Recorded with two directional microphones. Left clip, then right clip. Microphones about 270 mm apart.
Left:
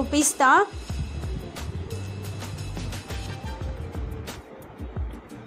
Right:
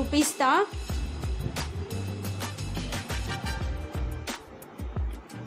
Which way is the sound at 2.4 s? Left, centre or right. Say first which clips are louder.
Right 3 dB; centre.